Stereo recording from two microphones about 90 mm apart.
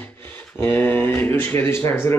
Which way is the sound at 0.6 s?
20° left (ahead or behind).